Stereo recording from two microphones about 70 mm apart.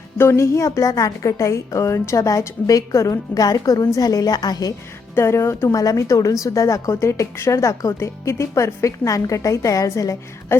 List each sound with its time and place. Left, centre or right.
0.2 s a woman's voice: left
5.1 s speech: left
5.7 s a woman's voice: left
7.9 s a woman's voice: left